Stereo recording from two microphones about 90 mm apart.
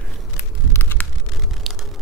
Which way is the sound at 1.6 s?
Centre (ahead or behind).